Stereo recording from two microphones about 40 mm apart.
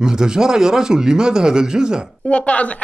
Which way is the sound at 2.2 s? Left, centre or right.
Left.